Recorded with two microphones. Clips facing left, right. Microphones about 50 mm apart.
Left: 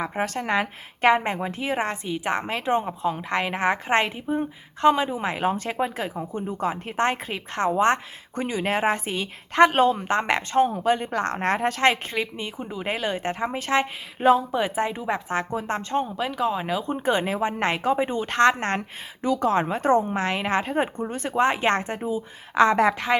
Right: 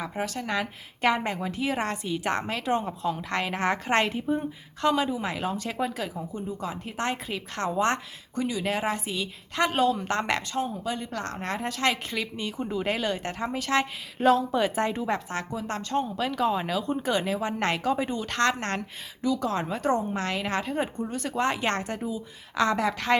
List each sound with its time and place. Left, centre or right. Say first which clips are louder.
0.0 s a woman's voice: left 5 dB; left
10.0 s a woman's voice: left 4 dB; left
10.5 s a woman's voice: left 9 dB; left
12.1 s a woman's voice: left 2 dB; left
16.1 s a woman's voice: left 1 dB; centre; by 23.0 s left